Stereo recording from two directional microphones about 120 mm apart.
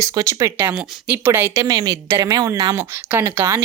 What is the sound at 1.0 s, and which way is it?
Speech, 15° right (ahead or behind).